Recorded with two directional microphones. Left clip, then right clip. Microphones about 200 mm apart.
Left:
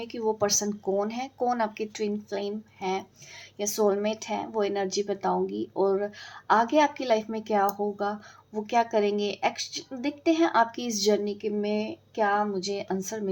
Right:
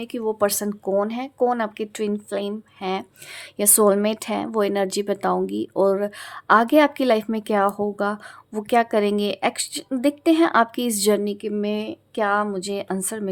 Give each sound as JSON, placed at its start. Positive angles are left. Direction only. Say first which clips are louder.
{"t": 0.0, "sound": "speech", "louder": "right 5 dB", "side_deg": -40}
{"t": 3.6, "sound": "speech", "louder": "right 7 dB", "side_deg": -50}